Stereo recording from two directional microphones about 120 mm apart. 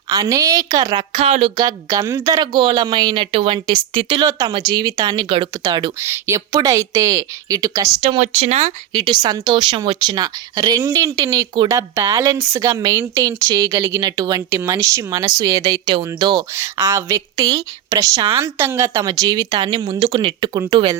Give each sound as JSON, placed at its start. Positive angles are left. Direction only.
{"t": 0.1, "sound": "a woman's voice", "side_deg": -30}
{"t": 1.5, "sound": "a woman's voice", "side_deg": -30}
{"t": 4.3, "sound": "speech", "side_deg": -30}
{"t": 4.5, "sound": "a woman's voice", "side_deg": -45}
{"t": 5.2, "sound": "a woman's voice", "side_deg": -50}
{"t": 6.0, "sound": "speech", "side_deg": -20}
{"t": 8.2, "sound": "speech", "side_deg": -70}
{"t": 8.9, "sound": "a woman's voice", "side_deg": -40}
{"t": 15.9, "sound": "speech", "side_deg": -45}
{"t": 16.6, "sound": "a woman's voice", "side_deg": -30}
{"t": 19.9, "sound": "speech", "side_deg": -50}
{"t": 20.5, "sound": "a woman's voice", "side_deg": -35}